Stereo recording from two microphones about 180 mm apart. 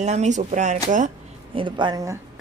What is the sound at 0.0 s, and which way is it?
Speech, 40° right (ahead or behind).